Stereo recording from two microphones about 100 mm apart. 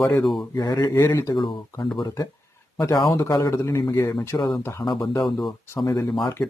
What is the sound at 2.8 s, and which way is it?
A man's voice, 40° left (ahead or behind).